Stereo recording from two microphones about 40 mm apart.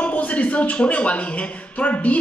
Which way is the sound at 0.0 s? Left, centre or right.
Left.